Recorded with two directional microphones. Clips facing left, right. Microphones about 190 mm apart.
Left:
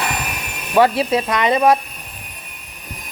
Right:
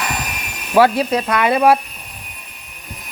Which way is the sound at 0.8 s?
Centre (ahead or behind).